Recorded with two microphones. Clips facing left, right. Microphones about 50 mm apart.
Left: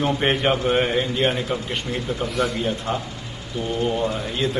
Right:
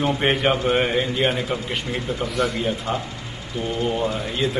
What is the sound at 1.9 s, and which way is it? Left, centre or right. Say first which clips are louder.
Speech: even; centre.